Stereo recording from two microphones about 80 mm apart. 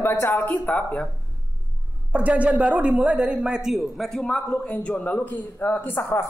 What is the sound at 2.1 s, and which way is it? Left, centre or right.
A man's voice, centre.